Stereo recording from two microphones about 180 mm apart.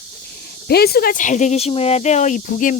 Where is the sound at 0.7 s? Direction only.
60° left (ahead or behind).